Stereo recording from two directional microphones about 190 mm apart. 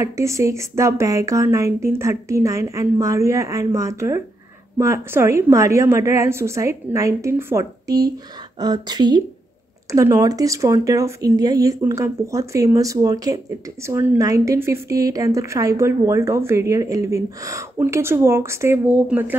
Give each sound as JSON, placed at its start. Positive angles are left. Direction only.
{"t": 0.0, "sound": "a woman's voice", "side_deg": -15}